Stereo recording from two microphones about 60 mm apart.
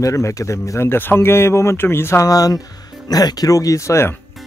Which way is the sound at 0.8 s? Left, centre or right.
Left.